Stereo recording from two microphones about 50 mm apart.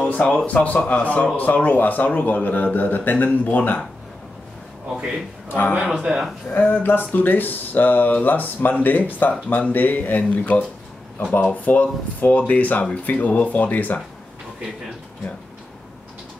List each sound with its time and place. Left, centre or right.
0.0 s speech: left
4.9 s speech: centre
5.5 s speech: left
5.8 s speech: centre
6.5 s speech: left